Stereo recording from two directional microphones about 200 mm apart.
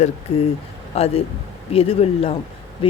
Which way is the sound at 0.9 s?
30° left (ahead or behind).